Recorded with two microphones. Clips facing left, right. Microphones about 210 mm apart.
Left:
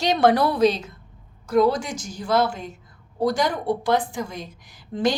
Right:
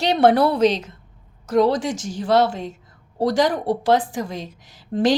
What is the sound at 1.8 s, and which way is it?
A woman's voice, 90° right.